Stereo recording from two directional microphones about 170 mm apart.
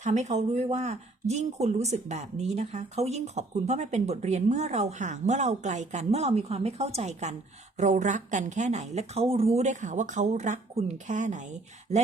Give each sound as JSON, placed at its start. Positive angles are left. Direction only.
{"t": 0.0, "sound": "a woman's voice", "side_deg": -45}